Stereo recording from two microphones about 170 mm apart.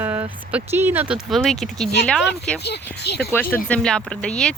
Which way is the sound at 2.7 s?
75° left (ahead or behind).